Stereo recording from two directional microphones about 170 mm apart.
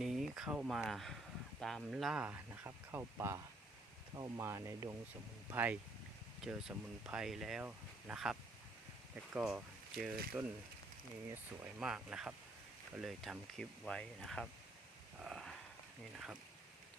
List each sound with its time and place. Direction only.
0.0 s speech: centre (ahead or behind)
11.8 s speech: 5° right (ahead or behind)
15.2 s a sound: centre (ahead or behind)
16.1 s speech: 5° right (ahead or behind)